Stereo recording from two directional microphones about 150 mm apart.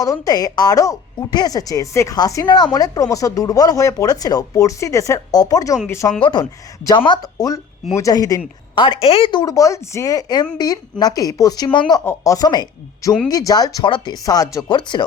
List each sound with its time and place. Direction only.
0.0 s speech: 25° left (ahead or behind)